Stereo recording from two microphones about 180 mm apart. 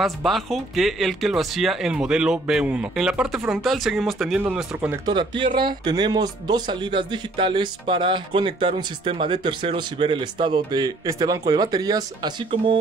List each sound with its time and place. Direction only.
0.0 s speech: centre (ahead or behind)
5.0 s speech: 25° right (ahead or behind)